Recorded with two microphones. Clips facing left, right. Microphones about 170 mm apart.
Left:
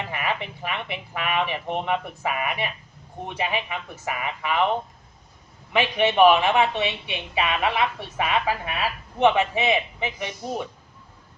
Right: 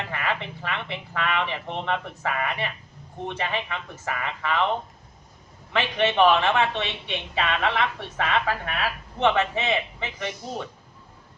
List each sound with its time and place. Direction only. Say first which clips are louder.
0.1 s speech: left 1 dB; 15° left (ahead or behind)
5.7 s speech: left 2 dB; 10° left (ahead or behind)